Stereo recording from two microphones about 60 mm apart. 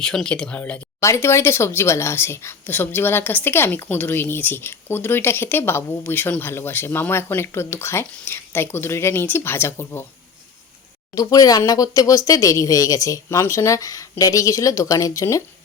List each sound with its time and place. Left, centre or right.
0.0 s speech: centre
0.9 s speech: left
11.1 s speech: left
13.4 s speech: left